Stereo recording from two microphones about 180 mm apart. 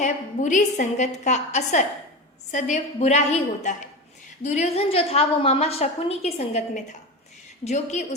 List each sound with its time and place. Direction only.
0.0 s a woman's voice: 45° left (ahead or behind)